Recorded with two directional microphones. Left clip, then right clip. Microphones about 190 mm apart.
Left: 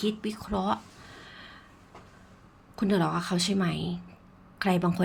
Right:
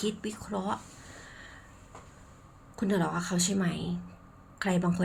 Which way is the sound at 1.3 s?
15° left (ahead or behind).